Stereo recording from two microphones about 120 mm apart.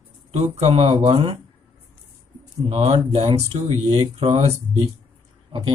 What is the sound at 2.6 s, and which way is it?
Speech, 60° right (ahead or behind).